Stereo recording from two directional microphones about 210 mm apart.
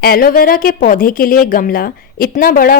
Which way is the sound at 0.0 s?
45° left (ahead or behind).